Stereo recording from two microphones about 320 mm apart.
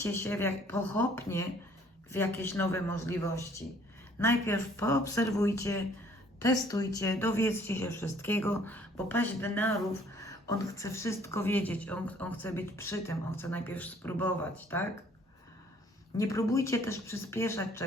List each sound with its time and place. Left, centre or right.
0.0 s a woman's voice: centre
16.1 s a woman's voice: centre